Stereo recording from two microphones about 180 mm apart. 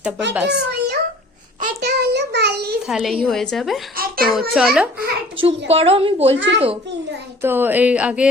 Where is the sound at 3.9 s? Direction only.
55° right (ahead or behind).